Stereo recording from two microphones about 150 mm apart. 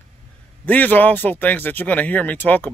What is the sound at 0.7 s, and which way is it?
Speech, 10° left (ahead or behind).